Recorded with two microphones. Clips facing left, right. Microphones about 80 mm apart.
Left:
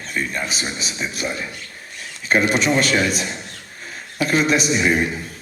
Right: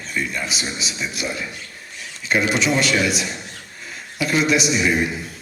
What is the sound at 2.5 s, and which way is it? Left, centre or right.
A man's voice, left.